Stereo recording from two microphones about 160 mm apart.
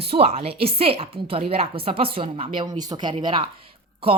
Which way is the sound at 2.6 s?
25° right (ahead or behind).